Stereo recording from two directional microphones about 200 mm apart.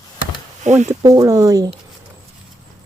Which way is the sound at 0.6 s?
35° right (ahead or behind).